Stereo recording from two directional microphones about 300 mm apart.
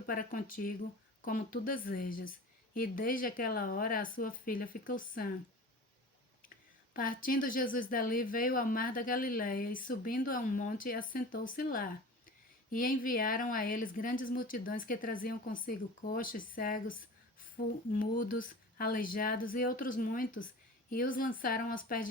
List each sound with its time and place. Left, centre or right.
0.0 s speech: left
6.9 s speech: left